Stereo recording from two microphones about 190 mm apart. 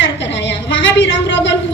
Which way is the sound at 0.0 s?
70° left (ahead or behind).